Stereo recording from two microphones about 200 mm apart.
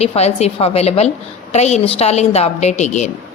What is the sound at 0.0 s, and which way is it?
A woman's voice, 30° left (ahead or behind).